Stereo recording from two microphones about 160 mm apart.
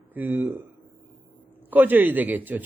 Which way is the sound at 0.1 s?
10° right (ahead or behind).